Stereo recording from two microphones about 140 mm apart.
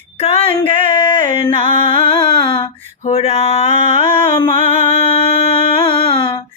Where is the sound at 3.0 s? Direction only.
45° left (ahead or behind).